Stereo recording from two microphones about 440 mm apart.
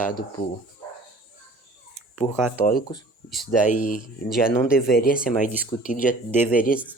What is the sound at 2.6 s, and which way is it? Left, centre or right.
Speech, centre.